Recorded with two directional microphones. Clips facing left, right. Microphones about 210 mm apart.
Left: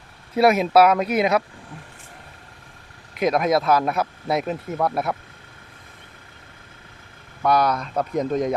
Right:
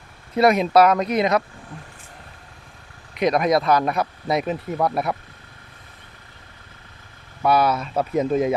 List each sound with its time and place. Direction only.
0.3 s speech: 5° left (ahead or behind)
3.2 s speech: centre (ahead or behind)
7.4 s speech: 5° right (ahead or behind)